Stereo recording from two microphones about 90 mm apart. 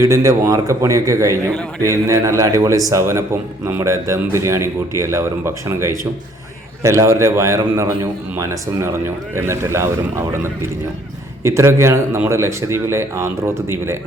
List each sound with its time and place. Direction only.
0.0 s a man's voice: 35° right (ahead or behind)